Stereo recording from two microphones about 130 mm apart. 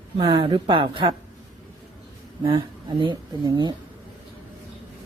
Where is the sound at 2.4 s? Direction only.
40° right (ahead or behind).